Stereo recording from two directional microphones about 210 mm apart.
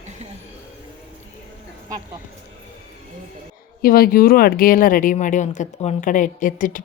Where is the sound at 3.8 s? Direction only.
45° left (ahead or behind).